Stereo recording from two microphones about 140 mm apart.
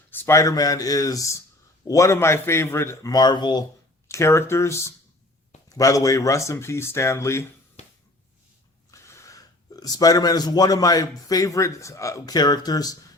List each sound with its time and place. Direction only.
0.1 s speech: 20° left (ahead or behind)
4.1 s speech: 20° left (ahead or behind)
8.9 s speech: 20° left (ahead or behind)